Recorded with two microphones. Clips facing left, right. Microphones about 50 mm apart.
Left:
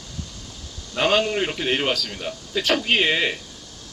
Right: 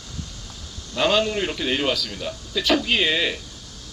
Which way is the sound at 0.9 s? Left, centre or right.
Left.